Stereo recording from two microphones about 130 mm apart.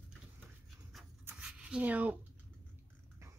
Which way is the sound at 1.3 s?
10° right (ahead or behind).